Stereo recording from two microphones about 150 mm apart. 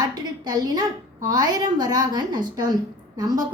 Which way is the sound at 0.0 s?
25° right (ahead or behind).